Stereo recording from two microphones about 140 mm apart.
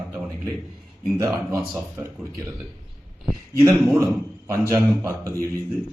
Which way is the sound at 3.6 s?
15° right (ahead or behind).